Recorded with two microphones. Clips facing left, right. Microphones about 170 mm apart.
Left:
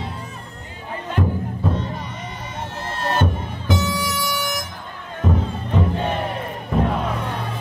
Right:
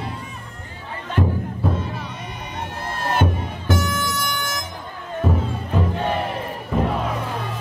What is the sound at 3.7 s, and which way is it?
Music, 15° left (ahead or behind).